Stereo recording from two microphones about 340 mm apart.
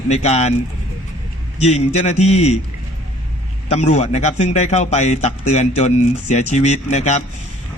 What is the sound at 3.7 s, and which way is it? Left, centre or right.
Speech, centre.